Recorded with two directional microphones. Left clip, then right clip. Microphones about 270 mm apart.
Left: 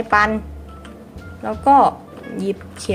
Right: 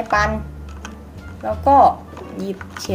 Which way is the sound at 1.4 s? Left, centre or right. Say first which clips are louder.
Right 1 dB; left.